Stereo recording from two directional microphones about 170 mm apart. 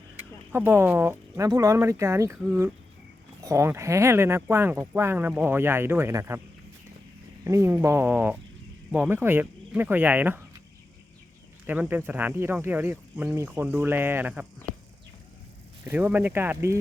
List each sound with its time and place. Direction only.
0.2 s speech: 10° right (ahead or behind)
3.4 s speech: 20° right (ahead or behind)
7.4 s speech: 15° right (ahead or behind)
11.6 s speech: 10° right (ahead or behind)
15.9 s speech: 10° right (ahead or behind)